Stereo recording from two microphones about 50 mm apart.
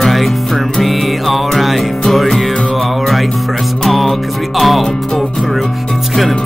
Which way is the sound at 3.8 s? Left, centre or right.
Centre.